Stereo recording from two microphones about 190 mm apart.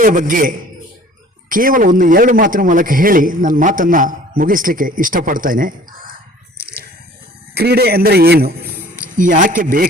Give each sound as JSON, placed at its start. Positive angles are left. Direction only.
{"t": 0.0, "sound": "a man's voice", "side_deg": -45}
{"t": 7.5, "sound": "a man's voice", "side_deg": -55}
{"t": 9.1, "sound": "a man's voice", "side_deg": -45}